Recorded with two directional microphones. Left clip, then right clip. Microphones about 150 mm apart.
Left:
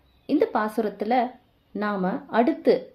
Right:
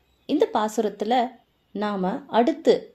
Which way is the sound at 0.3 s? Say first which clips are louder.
Right 1 dB; 35° right (ahead or behind).